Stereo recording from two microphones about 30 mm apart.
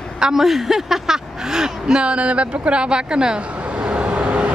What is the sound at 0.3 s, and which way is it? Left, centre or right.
Speech, centre.